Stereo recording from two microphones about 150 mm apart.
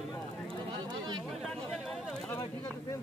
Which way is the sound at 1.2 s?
Centre (ahead or behind).